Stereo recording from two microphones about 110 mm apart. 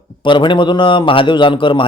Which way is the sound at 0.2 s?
45° left (ahead or behind).